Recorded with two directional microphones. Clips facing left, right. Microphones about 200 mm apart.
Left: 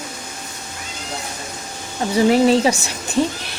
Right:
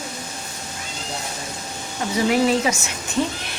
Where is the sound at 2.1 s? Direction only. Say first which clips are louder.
Left 5 dB; 30° left (ahead or behind).